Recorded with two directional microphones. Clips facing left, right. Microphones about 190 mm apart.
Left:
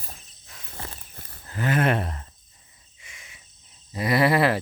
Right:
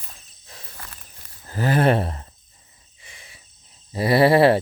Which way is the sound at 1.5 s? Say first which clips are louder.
Right 4 dB; 35° right (ahead or behind).